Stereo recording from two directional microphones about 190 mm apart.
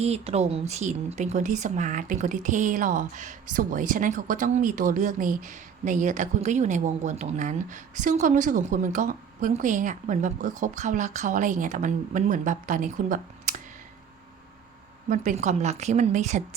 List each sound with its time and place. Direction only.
0.0 s speech: 35° right (ahead or behind)
15.1 s speech: 40° right (ahead or behind)